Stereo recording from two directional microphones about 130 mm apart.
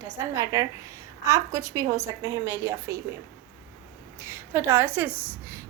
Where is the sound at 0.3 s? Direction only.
25° right (ahead or behind).